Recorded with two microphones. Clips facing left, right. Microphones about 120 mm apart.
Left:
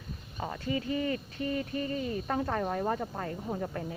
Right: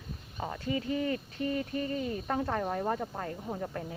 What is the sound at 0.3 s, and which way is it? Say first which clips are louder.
Speech: even; centre (ahead or behind).